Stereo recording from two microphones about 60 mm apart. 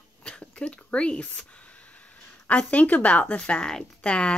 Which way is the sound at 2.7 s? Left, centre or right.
Left.